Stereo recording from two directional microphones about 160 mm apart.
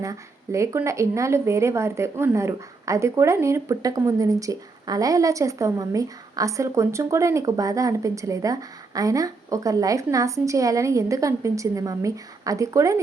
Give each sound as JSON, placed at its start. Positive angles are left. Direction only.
{"t": 0.0, "sound": "speech", "side_deg": -20}